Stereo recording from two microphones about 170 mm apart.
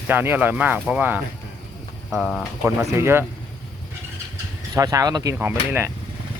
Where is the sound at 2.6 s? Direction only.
15° right (ahead or behind).